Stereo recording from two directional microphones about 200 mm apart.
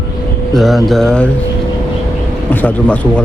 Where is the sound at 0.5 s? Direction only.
Centre (ahead or behind).